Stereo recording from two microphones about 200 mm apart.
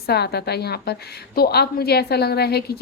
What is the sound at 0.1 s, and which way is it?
A woman's voice, 55° left (ahead or behind).